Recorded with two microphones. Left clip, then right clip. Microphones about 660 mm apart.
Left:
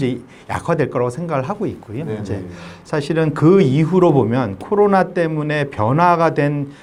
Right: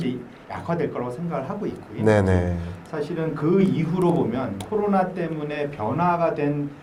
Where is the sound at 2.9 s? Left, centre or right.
Left.